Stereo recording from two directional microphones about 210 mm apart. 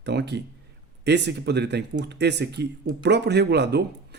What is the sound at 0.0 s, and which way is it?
Speech, 55° right (ahead or behind).